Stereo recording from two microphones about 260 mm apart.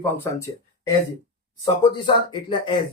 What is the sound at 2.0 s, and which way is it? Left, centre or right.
Speech, centre.